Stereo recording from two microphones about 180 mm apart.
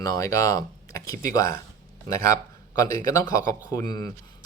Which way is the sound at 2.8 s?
20° left (ahead or behind).